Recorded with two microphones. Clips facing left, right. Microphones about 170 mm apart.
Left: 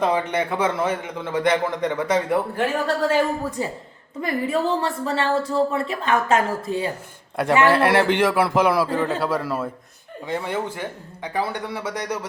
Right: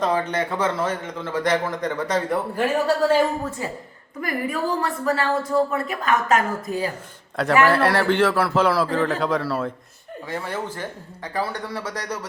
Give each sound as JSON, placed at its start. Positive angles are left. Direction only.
{"t": 0.0, "sound": "a man's voice", "side_deg": 15}
{"t": 2.6, "sound": "a man's voice", "side_deg": -10}
{"t": 4.2, "sound": "a woman's voice", "side_deg": 25}
{"t": 7.7, "sound": "a man's voice", "side_deg": 15}